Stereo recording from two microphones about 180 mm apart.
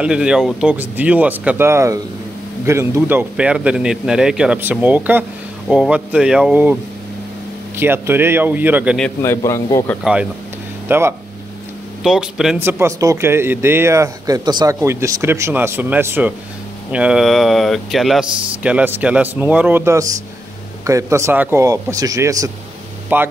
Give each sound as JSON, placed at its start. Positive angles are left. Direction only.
{"t": 0.0, "sound": "speech", "side_deg": -5}
{"t": 9.2, "sound": "a man's voice", "side_deg": 15}
{"t": 10.9, "sound": "speech", "side_deg": -15}
{"t": 12.0, "sound": "speech", "side_deg": -5}
{"t": 12.5, "sound": "speech", "side_deg": -15}